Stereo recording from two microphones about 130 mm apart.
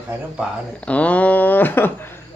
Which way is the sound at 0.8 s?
10° left (ahead or behind).